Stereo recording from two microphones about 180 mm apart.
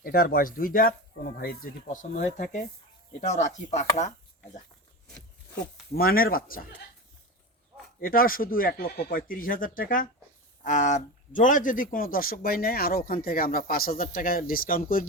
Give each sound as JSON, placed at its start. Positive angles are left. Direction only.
{"t": 0.0, "sound": "speech", "side_deg": 55}
{"t": 3.2, "sound": "chopping", "side_deg": 40}
{"t": 5.9, "sound": "speech", "side_deg": 55}
{"t": 8.0, "sound": "speech", "side_deg": 50}